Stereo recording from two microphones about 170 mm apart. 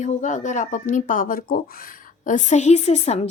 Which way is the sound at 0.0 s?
45° left (ahead or behind).